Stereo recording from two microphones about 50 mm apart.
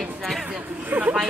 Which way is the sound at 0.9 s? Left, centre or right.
Right.